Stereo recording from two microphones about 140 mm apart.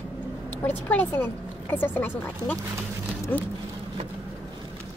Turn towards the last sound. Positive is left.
turn(degrees=15)  # may be behind; listen again after turning